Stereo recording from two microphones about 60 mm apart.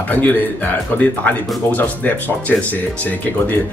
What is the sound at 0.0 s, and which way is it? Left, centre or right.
Speech, left.